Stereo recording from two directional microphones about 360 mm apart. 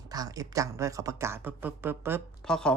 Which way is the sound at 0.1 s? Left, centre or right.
Centre.